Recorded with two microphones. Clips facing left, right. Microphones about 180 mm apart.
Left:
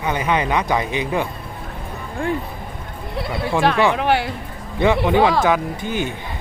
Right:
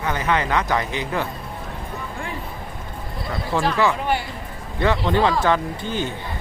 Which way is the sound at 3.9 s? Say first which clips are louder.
Left 5 dB; 75° left (ahead or behind).